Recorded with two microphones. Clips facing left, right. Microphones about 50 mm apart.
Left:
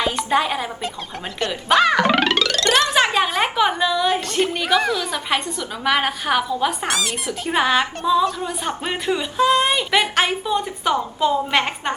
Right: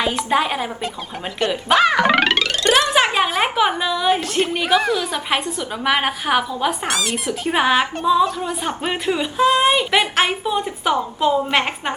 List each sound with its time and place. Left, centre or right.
0.0 s a woman's voice: centre
2.6 s speech: right
2.9 s a woman's voice: centre